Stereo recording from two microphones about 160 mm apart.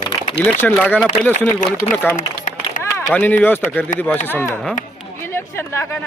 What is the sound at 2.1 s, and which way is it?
Run, 55° left (ahead or behind).